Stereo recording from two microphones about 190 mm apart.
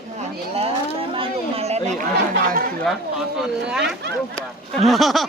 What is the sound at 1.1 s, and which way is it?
Chatter, 30° right (ahead or behind).